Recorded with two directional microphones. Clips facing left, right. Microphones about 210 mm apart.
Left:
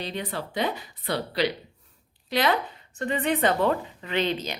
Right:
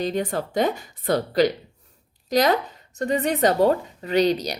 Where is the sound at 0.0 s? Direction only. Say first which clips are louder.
Right 7 dB; 45° right (ahead or behind).